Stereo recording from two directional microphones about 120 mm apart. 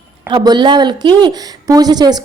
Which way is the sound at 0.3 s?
40° right (ahead or behind).